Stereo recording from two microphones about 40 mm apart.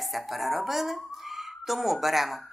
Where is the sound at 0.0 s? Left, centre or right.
Centre.